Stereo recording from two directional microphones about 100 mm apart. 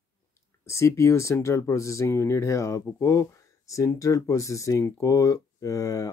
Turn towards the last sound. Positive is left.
turn(degrees=35)  # may be behind; listen again after turning